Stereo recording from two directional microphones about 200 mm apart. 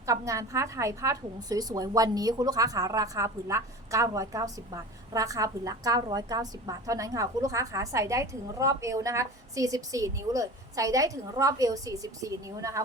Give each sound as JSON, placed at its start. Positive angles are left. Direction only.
{"t": 0.0, "sound": "a woman's voice", "side_deg": -15}